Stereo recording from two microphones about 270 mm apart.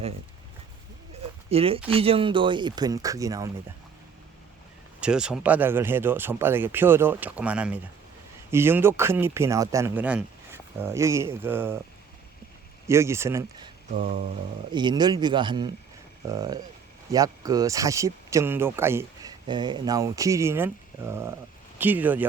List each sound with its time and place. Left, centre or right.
1.5 s speech: right
4.9 s speech: centre
12.9 s speech: centre
13.9 s a sound: right
14.7 s speech: centre